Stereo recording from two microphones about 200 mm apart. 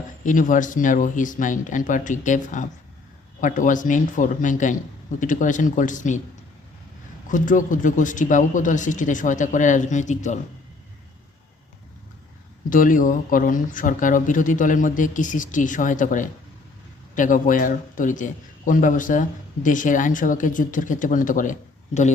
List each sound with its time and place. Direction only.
0.3 s a man's voice: 40° left (ahead or behind)
7.3 s a man's voice: 40° left (ahead or behind)
12.7 s a man's voice: 40° left (ahead or behind)